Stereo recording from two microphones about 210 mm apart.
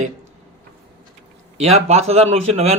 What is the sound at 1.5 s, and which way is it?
A man's voice, 30° right (ahead or behind).